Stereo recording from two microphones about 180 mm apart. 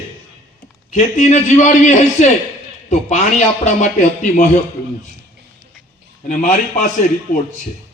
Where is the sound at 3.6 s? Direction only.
45° left (ahead or behind).